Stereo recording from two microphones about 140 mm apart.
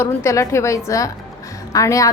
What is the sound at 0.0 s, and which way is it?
A woman's voice, 20° left (ahead or behind).